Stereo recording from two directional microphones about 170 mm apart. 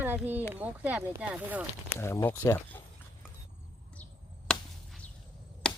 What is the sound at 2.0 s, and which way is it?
Speech, 15° left (ahead or behind).